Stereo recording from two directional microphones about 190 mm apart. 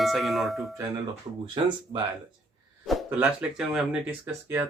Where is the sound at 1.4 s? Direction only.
25° right (ahead or behind).